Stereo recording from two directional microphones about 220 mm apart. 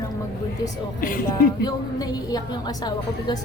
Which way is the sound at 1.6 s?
15° left (ahead or behind).